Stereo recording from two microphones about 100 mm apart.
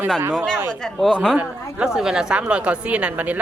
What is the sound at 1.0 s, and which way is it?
Speech, 5° left (ahead or behind).